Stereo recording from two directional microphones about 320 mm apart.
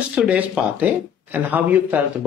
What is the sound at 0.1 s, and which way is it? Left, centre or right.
Speech, centre.